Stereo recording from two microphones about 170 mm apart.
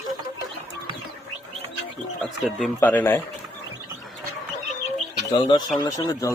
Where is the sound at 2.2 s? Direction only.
5° left (ahead or behind).